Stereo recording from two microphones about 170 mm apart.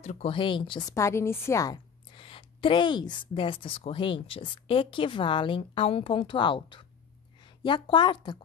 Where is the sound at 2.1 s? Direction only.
30° left (ahead or behind).